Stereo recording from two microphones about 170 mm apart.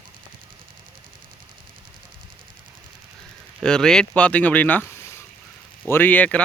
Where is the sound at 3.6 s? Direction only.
5° left (ahead or behind).